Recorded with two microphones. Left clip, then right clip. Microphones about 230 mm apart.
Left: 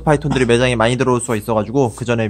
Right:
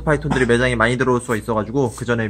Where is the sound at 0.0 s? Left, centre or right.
Left.